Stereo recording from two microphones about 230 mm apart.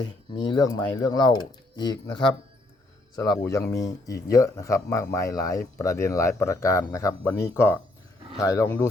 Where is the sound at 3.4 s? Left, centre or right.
Centre.